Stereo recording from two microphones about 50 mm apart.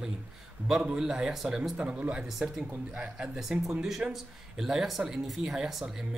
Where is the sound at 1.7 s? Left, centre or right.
Right.